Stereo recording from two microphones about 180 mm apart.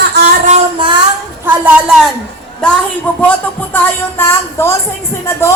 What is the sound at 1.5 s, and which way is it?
A woman's voice, 5° right (ahead or behind).